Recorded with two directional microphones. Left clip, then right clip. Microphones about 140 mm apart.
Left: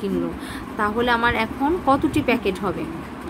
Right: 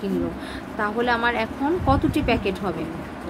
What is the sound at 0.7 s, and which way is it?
A woman's voice, 20° left (ahead or behind).